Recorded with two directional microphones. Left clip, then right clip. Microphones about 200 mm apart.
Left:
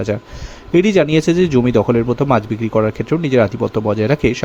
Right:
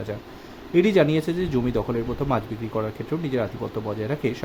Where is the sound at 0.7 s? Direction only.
35° left (ahead or behind).